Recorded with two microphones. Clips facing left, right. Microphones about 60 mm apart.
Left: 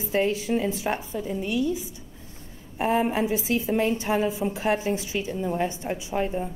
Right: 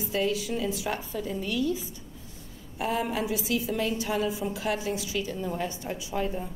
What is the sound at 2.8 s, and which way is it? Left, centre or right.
A woman's voice, left.